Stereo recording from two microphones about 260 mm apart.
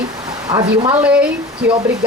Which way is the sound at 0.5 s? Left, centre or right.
Centre.